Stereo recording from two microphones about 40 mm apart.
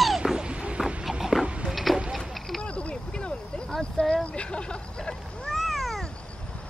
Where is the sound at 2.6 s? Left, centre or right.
Left.